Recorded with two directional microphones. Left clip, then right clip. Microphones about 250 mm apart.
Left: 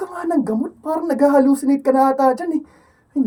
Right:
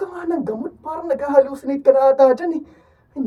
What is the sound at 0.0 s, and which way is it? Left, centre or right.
A woman's voice, left.